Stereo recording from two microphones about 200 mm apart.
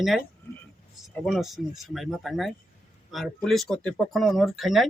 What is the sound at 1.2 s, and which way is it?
Speech, centre (ahead or behind).